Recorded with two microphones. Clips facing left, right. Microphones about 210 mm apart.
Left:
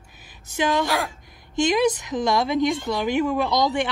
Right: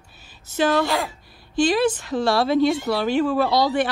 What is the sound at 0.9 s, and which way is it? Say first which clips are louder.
Speech: right 1 dB; centre (ahead or behind).